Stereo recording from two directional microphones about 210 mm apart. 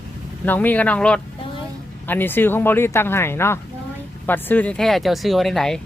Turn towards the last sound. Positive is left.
turn(degrees=0)  # may be behind; listen again after turning